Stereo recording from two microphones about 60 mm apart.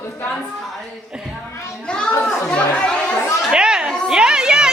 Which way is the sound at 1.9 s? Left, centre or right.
Centre.